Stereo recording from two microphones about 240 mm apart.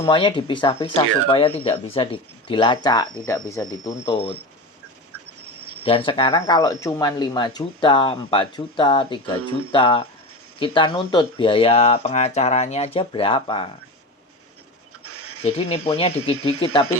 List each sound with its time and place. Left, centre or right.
0.0 s speech: centre
5.8 s speech: left
15.0 s a sound: right
15.4 s speech: left